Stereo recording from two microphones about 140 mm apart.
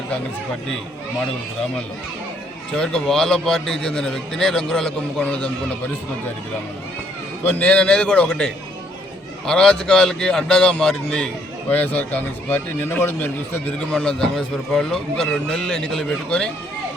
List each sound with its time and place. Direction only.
2.7 s speech: 5° left (ahead or behind)
7.4 s a man's voice: 10° left (ahead or behind)